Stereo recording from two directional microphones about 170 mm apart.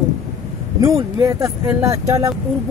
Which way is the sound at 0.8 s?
20° right (ahead or behind).